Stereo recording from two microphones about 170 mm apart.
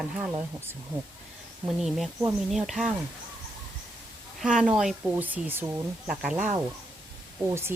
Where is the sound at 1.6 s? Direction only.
Centre (ahead or behind).